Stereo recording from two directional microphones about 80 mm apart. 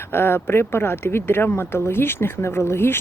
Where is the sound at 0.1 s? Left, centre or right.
Left.